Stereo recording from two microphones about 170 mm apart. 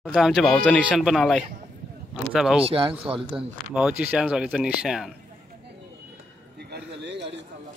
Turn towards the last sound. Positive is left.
turn(degrees=-90)